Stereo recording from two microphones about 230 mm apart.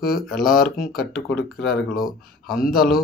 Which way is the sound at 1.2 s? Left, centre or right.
Centre.